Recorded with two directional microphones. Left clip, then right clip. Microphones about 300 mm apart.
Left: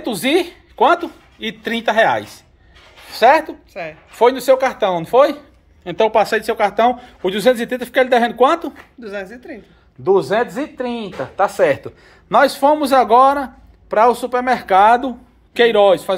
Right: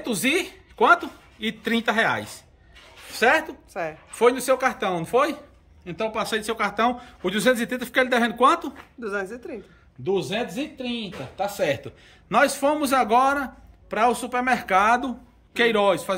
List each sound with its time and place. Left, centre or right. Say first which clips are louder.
0.0 s a woman's voice: left 6 dB; centre
10.1 s speech: left 10 dB; centre
11.3 s a man's voice: left 10 dB; centre